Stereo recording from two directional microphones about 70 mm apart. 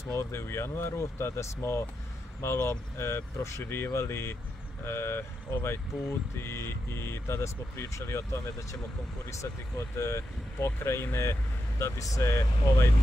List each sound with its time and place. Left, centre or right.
0.1 s speech: left